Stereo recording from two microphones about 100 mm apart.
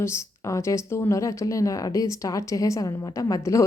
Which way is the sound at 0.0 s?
30° left (ahead or behind).